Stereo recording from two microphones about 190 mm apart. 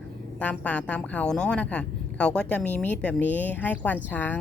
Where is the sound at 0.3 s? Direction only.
5° left (ahead or behind).